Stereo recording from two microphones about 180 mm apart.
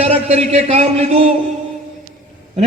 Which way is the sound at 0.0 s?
35° right (ahead or behind).